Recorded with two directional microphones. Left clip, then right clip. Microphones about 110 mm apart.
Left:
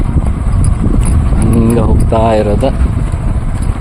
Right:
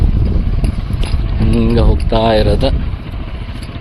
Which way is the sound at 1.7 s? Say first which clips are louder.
Left 3 dB; 15° left (ahead or behind).